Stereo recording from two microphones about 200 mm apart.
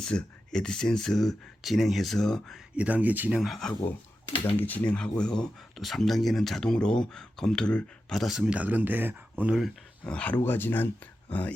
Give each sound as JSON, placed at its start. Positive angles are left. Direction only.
{"t": 0.0, "sound": "speech", "side_deg": 5}